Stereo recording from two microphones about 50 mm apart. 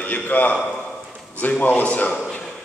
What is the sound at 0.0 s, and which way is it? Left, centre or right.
A man's voice, left.